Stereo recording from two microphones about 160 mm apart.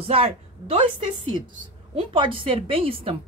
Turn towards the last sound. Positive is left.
turn(degrees=-35)  # may be behind; listen again after turning